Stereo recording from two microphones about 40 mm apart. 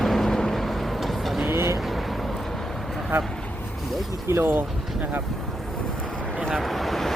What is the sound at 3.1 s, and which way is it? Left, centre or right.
Speech, right.